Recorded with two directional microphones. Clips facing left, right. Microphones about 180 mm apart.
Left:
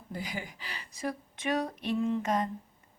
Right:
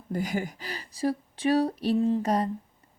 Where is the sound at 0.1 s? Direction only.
45° right (ahead or behind).